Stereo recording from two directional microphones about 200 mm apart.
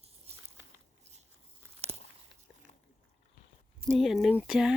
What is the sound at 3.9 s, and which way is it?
Speech, centre (ahead or behind).